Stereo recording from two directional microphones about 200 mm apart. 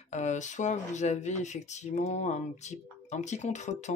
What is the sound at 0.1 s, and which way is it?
Speech, 35° left (ahead or behind).